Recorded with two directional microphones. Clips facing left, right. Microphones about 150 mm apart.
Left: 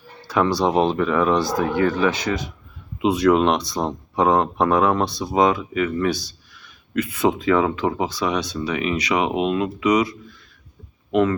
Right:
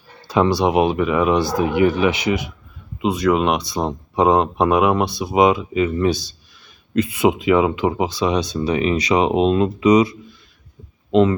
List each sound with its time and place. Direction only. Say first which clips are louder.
0.3 s speech: right 3 dB; 20° right (ahead or behind)
3.0 s speech: left 1 dB; centre (ahead or behind); by 8.5 s 20° right (ahead or behind)
8.5 s speech: right 4 dB; 30° right (ahead or behind)
11.1 s speech: right 4 dB; 20° right (ahead or behind)